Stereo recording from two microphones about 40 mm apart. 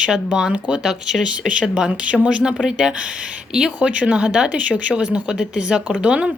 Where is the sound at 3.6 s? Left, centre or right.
Right.